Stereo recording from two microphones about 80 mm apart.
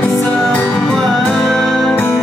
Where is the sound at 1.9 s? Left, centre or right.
Left.